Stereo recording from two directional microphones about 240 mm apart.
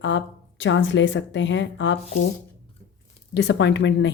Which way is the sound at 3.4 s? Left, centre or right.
Left.